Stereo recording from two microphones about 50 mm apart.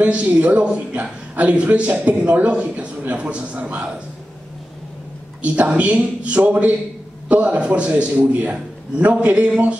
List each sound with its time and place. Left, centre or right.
0.0 s a man's voice: right
5.4 s a man's voice: right